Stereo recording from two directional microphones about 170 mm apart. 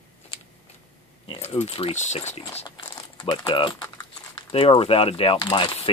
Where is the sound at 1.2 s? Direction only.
40° left (ahead or behind).